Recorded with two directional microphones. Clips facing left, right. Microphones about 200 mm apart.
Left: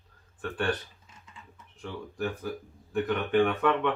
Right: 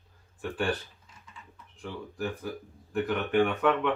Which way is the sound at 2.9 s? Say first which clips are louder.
Left 1 dB; 5° right (ahead or behind).